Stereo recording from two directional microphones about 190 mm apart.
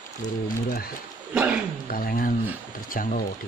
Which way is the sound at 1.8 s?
50° left (ahead or behind).